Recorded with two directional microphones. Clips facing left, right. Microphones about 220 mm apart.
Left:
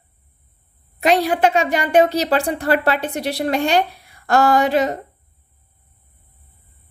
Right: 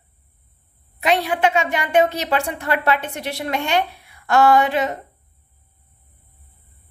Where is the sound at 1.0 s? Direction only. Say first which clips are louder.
Left 3 dB; 40° left (ahead or behind).